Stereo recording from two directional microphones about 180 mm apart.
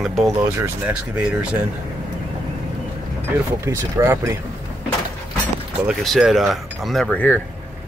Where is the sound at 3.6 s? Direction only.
15° right (ahead or behind).